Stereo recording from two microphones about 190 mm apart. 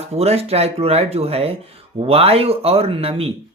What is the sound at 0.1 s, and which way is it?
Speech, 30° right (ahead or behind).